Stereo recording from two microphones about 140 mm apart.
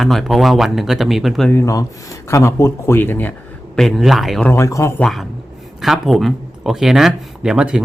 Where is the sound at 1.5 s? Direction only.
20° left (ahead or behind).